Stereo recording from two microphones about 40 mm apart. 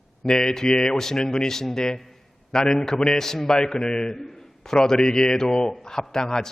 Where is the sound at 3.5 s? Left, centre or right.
Left.